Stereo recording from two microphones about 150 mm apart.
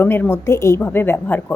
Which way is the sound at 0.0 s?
15° left (ahead or behind).